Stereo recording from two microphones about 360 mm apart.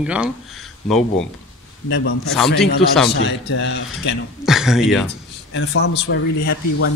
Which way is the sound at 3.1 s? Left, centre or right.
Left.